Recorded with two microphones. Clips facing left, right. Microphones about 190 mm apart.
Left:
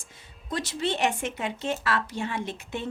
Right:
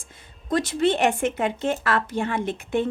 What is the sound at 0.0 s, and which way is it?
Speech, 55° right (ahead or behind).